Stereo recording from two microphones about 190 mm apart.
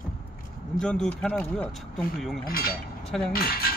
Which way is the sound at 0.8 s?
5° left (ahead or behind).